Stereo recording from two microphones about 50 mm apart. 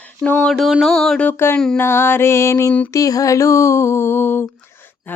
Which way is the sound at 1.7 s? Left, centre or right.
Left.